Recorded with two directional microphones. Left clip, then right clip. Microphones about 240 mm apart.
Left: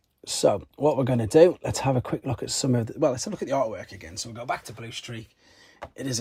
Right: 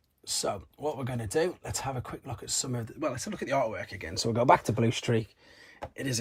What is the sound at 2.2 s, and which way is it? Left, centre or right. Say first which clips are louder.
Speech: left 7 dB; left.